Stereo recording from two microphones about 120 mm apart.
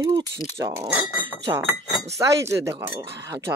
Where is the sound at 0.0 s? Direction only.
25° right (ahead or behind).